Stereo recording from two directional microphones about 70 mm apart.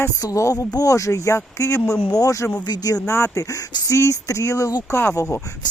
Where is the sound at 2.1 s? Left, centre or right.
Left.